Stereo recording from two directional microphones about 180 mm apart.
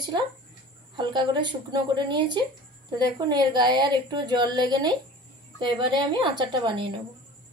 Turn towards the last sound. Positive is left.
turn(degrees=-25)  # may be behind; listen again after turning